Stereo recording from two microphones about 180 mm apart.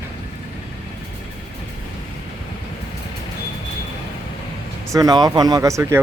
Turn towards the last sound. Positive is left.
turn(degrees=-15)  # may be behind; listen again after turning